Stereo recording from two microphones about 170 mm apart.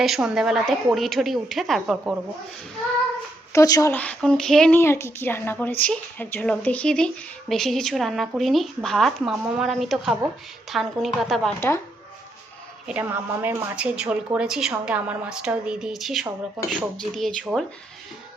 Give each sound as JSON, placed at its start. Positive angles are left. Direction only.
{"t": 0.0, "sound": "a woman's voice", "side_deg": 0}
{"t": 3.5, "sound": "speech", "side_deg": 20}
{"t": 4.8, "sound": "a woman's voice", "side_deg": 15}
{"t": 12.9, "sound": "a woman's voice", "side_deg": -10}